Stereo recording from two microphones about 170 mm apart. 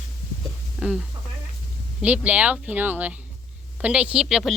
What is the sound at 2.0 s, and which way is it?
A woman's voice, 5° right (ahead or behind).